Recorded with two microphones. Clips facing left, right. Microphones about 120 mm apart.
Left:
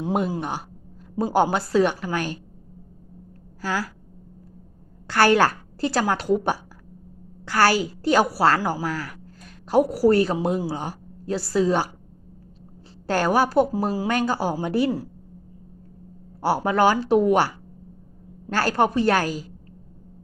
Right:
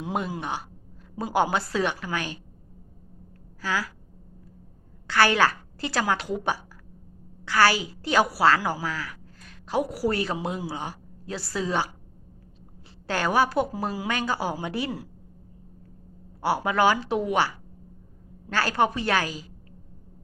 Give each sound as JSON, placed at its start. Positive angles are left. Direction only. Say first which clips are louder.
{"t": 0.3, "sound": "speech", "louder": "left 4 dB", "side_deg": 35}
{"t": 3.6, "sound": "speech", "louder": "left 2 dB", "side_deg": 40}
{"t": 5.0, "sound": "a woman's voice", "louder": "left 4 dB", "side_deg": 45}
{"t": 13.3, "sound": "speech", "louder": "left 3 dB", "side_deg": 40}
{"t": 16.4, "sound": "speech", "louder": "left 3 dB", "side_deg": 35}